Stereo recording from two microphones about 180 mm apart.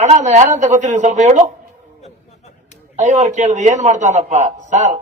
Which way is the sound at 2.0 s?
35° left (ahead or behind).